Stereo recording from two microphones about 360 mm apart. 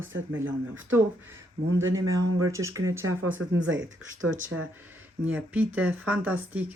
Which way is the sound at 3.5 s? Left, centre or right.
Right.